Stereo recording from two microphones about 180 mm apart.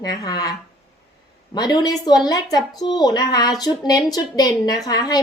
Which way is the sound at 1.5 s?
20° left (ahead or behind).